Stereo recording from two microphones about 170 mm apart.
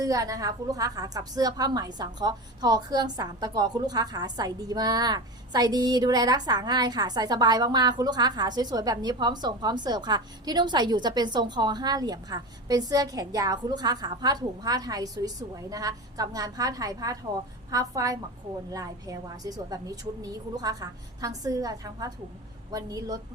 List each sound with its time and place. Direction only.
0.0 s a woman's voice: 20° right (ahead or behind)